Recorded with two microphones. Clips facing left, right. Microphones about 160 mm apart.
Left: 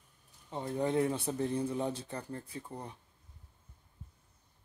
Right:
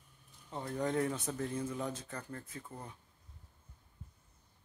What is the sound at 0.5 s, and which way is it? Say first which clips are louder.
Speech: left 3 dB; 20° left (ahead or behind).